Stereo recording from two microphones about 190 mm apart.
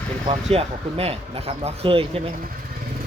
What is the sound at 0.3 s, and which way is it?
Speech, 30° right (ahead or behind).